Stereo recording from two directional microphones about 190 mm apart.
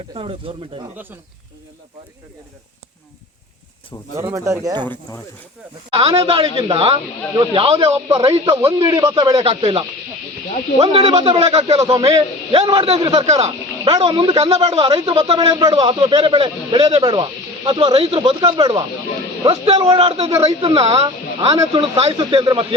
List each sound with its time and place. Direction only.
0.1 s speech: 30° right (ahead or behind)
4.2 s speech: 15° right (ahead or behind)
5.1 s speech: 20° left (ahead or behind)
5.9 s speech: 30° right (ahead or behind)
9.3 s speech: 30° right (ahead or behind)
19.4 s speech: 30° right (ahead or behind)